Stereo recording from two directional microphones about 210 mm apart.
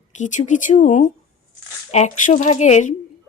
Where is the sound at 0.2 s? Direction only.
35° left (ahead or behind).